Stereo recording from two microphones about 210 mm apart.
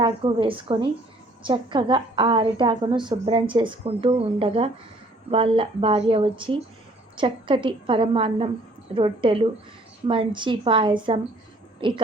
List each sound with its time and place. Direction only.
0.0 s a woman's voice: 25° right (ahead or behind)